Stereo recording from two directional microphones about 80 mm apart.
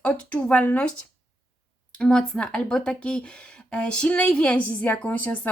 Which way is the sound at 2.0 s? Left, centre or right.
Centre.